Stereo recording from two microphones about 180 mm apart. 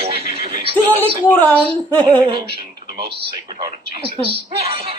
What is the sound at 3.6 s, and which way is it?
Speech, 30° right (ahead or behind).